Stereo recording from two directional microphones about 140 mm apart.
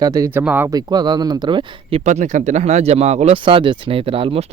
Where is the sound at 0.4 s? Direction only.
15° right (ahead or behind).